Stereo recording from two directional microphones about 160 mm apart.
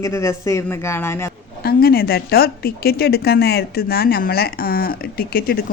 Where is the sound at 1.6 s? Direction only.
70° left (ahead or behind).